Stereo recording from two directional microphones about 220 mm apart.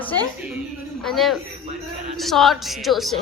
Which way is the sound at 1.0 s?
Centre (ahead or behind).